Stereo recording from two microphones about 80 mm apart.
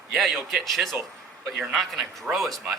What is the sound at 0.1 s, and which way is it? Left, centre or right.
A man's voice, centre.